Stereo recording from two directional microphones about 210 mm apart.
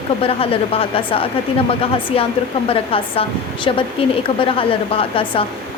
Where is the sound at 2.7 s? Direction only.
25° left (ahead or behind).